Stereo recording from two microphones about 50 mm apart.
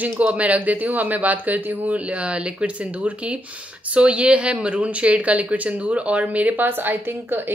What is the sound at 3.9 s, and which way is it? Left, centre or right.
A woman's voice, right.